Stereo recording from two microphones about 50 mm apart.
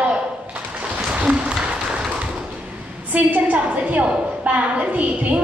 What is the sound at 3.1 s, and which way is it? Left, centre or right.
A woman's voice, right.